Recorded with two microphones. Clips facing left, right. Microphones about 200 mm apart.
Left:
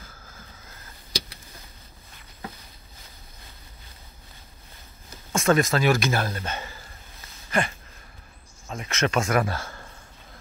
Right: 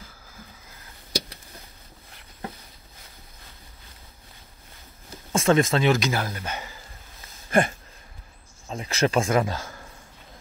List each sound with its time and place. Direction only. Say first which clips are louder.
5.3 s speech: right 1 dB; 30° right (ahead or behind)
7.5 s a sound: right 5 dB; 50° right (ahead or behind)
8.6 s speech: right 2 dB; 30° right (ahead or behind)
9.4 s speech: right 1 dB; 15° right (ahead or behind)